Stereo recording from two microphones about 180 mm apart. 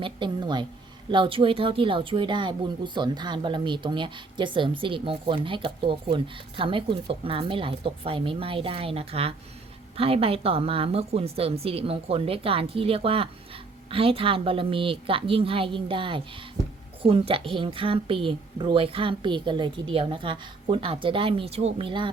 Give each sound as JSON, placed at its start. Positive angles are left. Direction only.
{"t": 0.0, "sound": "speech", "side_deg": -25}